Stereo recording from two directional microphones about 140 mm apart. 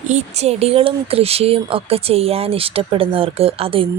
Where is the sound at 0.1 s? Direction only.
50° right (ahead or behind).